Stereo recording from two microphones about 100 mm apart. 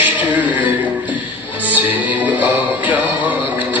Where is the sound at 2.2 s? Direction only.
15° right (ahead or behind).